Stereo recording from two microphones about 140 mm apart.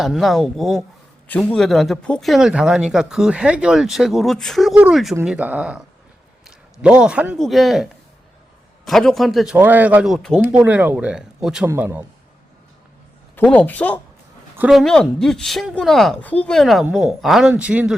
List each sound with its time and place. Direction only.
0.0 s speech: centre (ahead or behind)
6.8 s speech: 5° right (ahead or behind)
9.6 s speech: 15° right (ahead or behind)
11.7 s speech: 15° right (ahead or behind)
13.5 s speech: 10° left (ahead or behind); by 17.9 s 10° right (ahead or behind)